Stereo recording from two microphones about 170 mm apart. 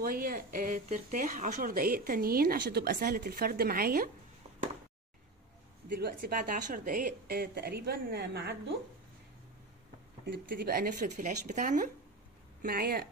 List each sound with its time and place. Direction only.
0.0 s a woman's voice: 60° right (ahead or behind)
5.9 s a woman's voice: 60° right (ahead or behind); by 8.7 s 75° right (ahead or behind)
10.3 s speech: 65° right (ahead or behind); by 11.9 s 45° right (ahead or behind)
12.6 s a woman's voice: 60° right (ahead or behind)